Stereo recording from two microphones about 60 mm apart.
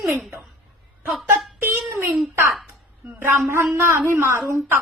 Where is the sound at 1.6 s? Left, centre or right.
Right.